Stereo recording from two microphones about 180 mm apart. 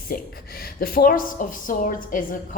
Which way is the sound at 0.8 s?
50° left (ahead or behind).